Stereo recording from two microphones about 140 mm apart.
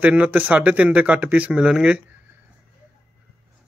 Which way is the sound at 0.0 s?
10° right (ahead or behind).